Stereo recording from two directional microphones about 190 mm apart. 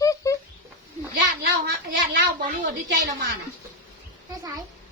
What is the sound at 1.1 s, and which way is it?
Speech, 55° right (ahead or behind).